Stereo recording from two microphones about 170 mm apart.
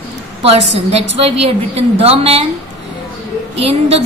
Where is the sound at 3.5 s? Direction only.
35° right (ahead or behind).